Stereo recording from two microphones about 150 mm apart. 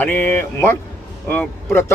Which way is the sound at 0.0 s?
15° left (ahead or behind).